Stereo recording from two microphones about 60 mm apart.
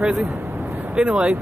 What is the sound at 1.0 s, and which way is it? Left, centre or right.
Speech, centre.